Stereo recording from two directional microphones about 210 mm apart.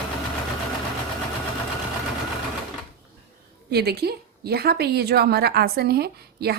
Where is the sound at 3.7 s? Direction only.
50° right (ahead or behind).